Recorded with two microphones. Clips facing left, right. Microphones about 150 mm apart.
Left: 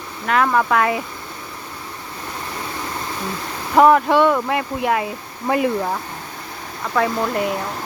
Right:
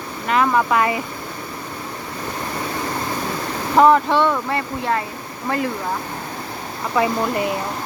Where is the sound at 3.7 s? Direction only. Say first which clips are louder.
Left 1 dB; 5° left (ahead or behind).